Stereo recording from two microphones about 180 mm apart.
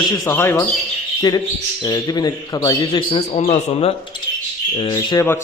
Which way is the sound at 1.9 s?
20° left (ahead or behind).